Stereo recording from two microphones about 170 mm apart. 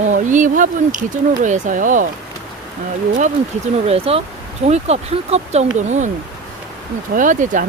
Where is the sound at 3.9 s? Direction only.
35° right (ahead or behind).